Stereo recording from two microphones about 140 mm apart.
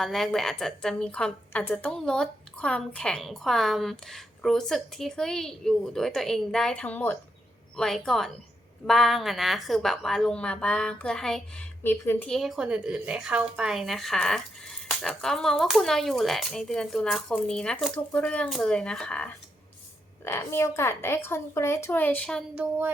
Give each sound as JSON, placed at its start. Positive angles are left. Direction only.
{"t": 0.0, "sound": "a woman's voice", "side_deg": 5}
{"t": 12.3, "sound": "a woman's voice", "side_deg": 0}
{"t": 20.2, "sound": "a woman's voice", "side_deg": 20}